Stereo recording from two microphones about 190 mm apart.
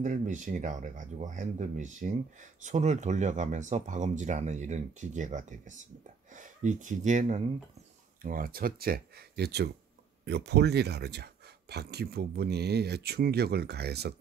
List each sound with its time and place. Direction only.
0.0 s speech: 40° right (ahead or behind); by 14.1 s 60° right (ahead or behind)